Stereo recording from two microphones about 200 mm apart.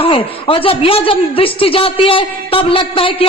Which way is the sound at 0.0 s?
25° left (ahead or behind).